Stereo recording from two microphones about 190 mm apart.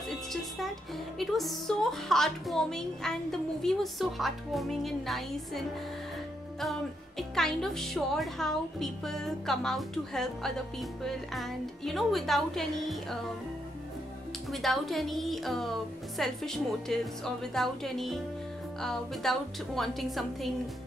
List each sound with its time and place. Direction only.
1.1 s a woman's voice: centre (ahead or behind)
14.5 s a woman's voice: centre (ahead or behind)